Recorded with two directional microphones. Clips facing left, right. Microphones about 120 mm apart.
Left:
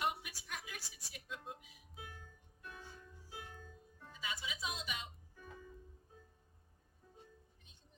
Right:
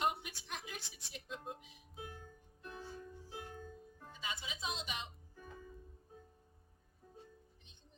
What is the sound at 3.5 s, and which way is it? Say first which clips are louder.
Music: right 6 dB; 40° right (ahead or behind).